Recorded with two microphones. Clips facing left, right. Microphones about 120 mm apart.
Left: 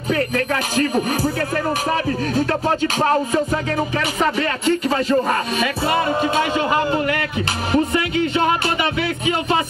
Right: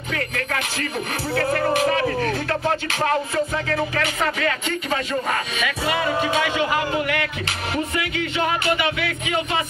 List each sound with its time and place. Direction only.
0.7 s speech: 40° left (ahead or behind)
2.6 s speech: 35° left (ahead or behind)
5.6 s speech: 35° left (ahead or behind)